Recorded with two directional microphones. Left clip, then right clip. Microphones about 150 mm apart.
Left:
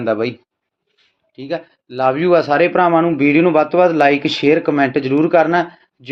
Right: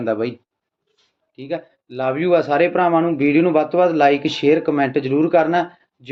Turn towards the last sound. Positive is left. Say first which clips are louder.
# left 3 dB
turn(degrees=35)  # may be behind; listen again after turning